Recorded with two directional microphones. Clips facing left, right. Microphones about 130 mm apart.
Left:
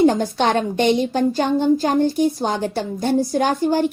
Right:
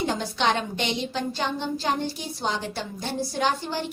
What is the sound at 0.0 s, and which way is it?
A woman's voice, 50° left (ahead or behind).